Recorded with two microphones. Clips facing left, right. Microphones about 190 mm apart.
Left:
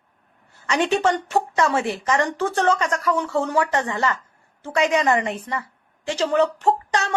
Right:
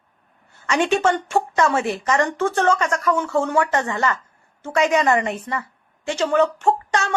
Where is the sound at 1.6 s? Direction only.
30° left (ahead or behind).